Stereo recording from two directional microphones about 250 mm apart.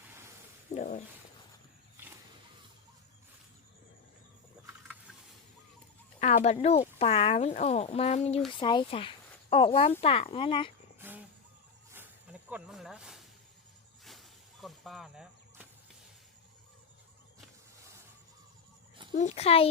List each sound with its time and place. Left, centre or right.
0.7 s a sound: left
6.1 s speech: left
11.0 s vehicle: centre
11.9 s snake: centre
14.0 s a sound: centre
19.1 s speech: left